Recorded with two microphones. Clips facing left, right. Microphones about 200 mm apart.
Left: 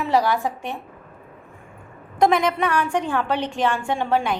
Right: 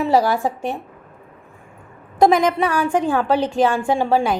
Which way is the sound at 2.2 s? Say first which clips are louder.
Right 4 dB; 35° right (ahead or behind).